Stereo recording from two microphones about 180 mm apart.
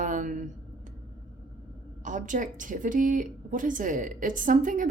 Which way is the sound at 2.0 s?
45° right (ahead or behind).